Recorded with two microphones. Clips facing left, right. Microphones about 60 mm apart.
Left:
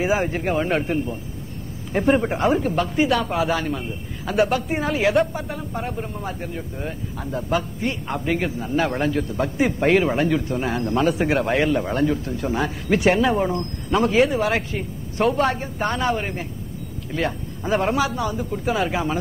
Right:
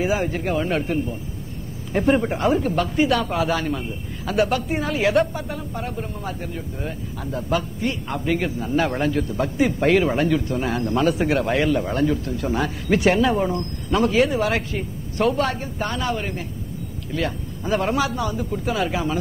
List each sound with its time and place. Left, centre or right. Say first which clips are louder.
0.7 s a man's voice: left 1 dB; centre
1.9 s speech: even; centre
16.1 s a man's voice: left 2 dB; left
17.6 s speech: left 1 dB; centre